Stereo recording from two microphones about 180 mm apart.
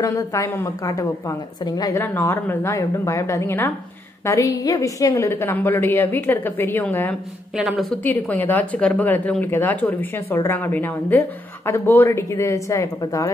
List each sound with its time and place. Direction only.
0.0 s speech: 15° left (ahead or behind)
7.5 s a woman's voice: 5° right (ahead or behind)
8.0 s speech: 10° left (ahead or behind)